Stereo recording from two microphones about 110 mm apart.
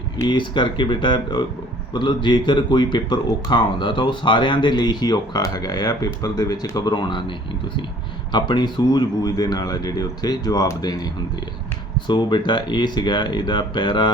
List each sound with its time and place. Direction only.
0.3 s speech: 45° left (ahead or behind)